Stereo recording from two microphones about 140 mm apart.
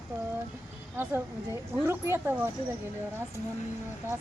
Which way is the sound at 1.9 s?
15° right (ahead or behind).